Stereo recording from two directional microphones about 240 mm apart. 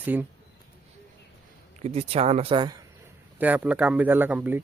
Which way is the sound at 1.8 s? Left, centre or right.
Right.